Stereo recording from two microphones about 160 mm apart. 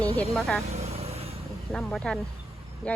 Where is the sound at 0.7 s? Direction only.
40° right (ahead or behind).